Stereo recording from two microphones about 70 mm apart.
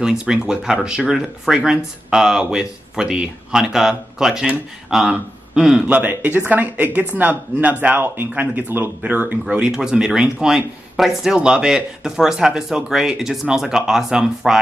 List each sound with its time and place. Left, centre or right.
0.0 s speech: centre
6.0 s speech: right
9.6 s speech: centre